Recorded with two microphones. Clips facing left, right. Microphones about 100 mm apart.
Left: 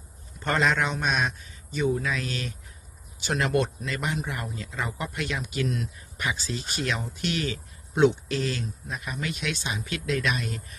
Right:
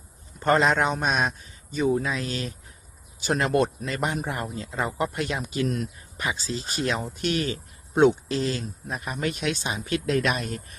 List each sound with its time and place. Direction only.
0.4 s speech: 35° right (ahead or behind)
4.4 s speech: 30° right (ahead or behind)
6.2 s speech: 30° right (ahead or behind)
8.3 s speech: 30° right (ahead or behind)